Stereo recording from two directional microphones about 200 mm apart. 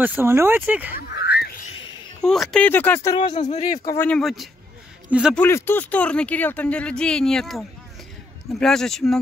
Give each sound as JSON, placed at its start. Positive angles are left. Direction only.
{"t": 0.0, "sound": "speech", "side_deg": -10}
{"t": 0.9, "sound": "a sound", "side_deg": 55}
{"t": 2.2, "sound": "speech", "side_deg": 0}
{"t": 3.3, "sound": "speech", "side_deg": 35}
{"t": 3.8, "sound": "speech", "side_deg": 15}
{"t": 4.2, "sound": "speech", "side_deg": 0}
{"t": 5.3, "sound": "speech", "side_deg": 10}